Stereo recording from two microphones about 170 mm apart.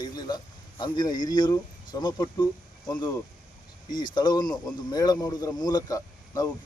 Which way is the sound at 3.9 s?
25° left (ahead or behind).